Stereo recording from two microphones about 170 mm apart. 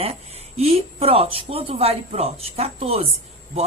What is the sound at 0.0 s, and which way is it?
A woman's voice, 35° right (ahead or behind).